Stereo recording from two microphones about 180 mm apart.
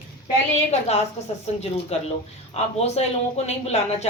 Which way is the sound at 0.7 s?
35° left (ahead or behind).